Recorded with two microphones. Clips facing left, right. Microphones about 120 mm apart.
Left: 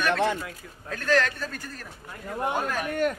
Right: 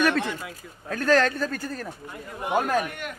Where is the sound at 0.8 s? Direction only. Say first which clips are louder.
Right 3 dB; 40° right (ahead or behind).